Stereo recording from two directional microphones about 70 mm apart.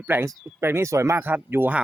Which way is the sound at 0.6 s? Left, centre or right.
Right.